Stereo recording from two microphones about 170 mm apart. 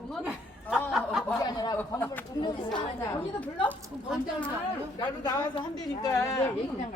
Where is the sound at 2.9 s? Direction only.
10° left (ahead or behind).